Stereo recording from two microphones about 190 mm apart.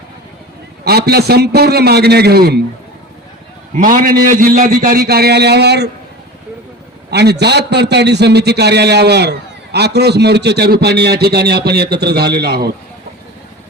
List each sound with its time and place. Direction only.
0.9 s a man's voice: 55° right (ahead or behind)
3.8 s a man's voice: 45° right (ahead or behind)
7.1 s a man's voice: 60° right (ahead or behind)